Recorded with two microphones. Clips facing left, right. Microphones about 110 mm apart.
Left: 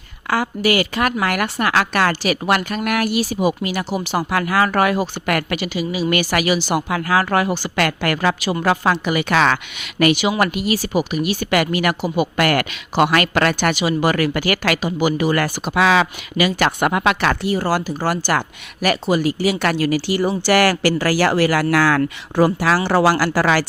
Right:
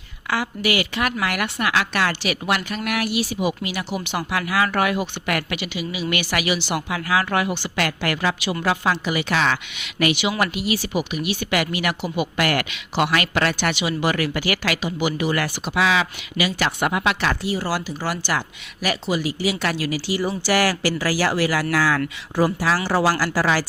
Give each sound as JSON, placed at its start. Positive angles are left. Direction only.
{"t": 0.3, "sound": "a woman's voice", "side_deg": 45}